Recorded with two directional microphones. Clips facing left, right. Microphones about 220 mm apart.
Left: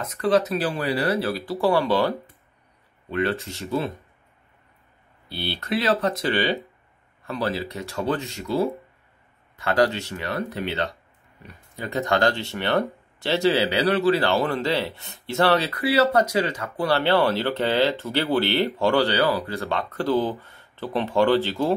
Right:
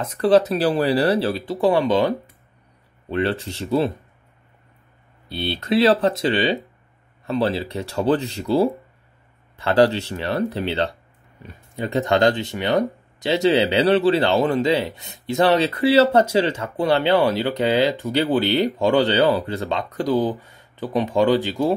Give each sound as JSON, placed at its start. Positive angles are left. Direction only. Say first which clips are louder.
{"t": 0.0, "sound": "speech", "louder": "right 5 dB", "side_deg": -30}
{"t": 3.1, "sound": "speech", "louder": "right 2 dB", "side_deg": -30}
{"t": 5.3, "sound": "speech", "louder": "right 6 dB", "side_deg": -20}